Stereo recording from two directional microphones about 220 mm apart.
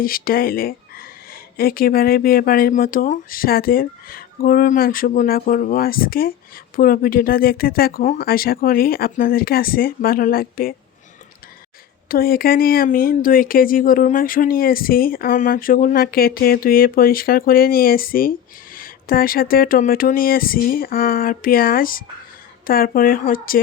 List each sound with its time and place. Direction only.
0.0 s speech: 40° left (ahead or behind)
12.0 s speech: 40° left (ahead or behind)